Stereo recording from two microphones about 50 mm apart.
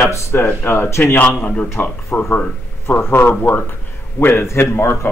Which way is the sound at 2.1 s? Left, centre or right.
Left.